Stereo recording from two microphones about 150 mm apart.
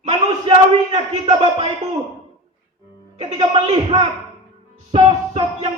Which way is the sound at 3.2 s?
45° right (ahead or behind).